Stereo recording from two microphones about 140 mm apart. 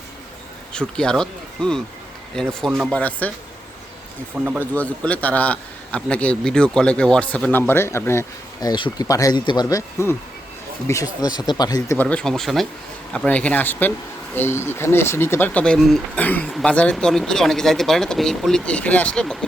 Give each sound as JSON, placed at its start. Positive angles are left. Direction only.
{"t": 0.7, "sound": "speech", "side_deg": 5}
{"t": 2.9, "sound": "a man's voice", "side_deg": 10}
{"t": 4.4, "sound": "speech", "side_deg": -10}
{"t": 4.6, "sound": "a man's voice", "side_deg": 10}
{"t": 8.7, "sound": "speech", "side_deg": 30}
{"t": 11.9, "sound": "a man's voice", "side_deg": 10}